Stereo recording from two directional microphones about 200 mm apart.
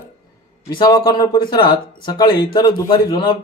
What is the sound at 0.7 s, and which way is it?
A man's voice, 20° left (ahead or behind).